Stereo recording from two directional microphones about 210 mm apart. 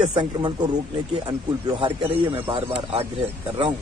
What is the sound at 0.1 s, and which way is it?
A man's voice, 20° right (ahead or behind).